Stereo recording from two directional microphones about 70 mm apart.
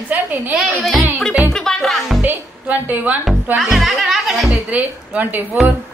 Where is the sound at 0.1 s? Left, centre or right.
Right.